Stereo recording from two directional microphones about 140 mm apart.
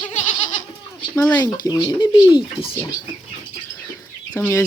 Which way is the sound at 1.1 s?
10° left (ahead or behind).